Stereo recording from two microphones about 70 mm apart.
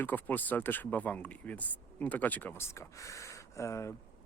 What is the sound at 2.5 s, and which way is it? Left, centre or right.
Speech, left.